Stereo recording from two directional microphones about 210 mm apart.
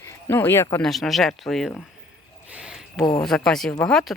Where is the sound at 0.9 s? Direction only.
Centre (ahead or behind).